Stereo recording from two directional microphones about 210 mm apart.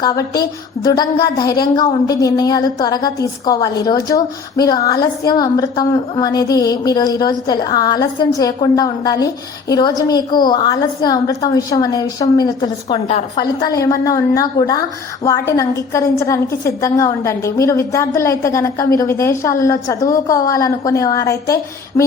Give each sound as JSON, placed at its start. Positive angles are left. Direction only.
{"t": 0.0, "sound": "a woman's voice", "side_deg": 20}